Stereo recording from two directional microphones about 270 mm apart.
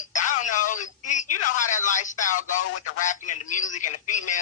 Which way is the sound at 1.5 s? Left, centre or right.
Left.